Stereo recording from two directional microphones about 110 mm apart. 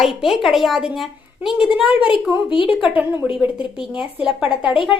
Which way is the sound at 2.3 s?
50° left (ahead or behind).